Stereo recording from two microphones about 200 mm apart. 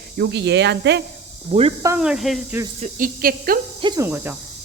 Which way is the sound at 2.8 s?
45° right (ahead or behind).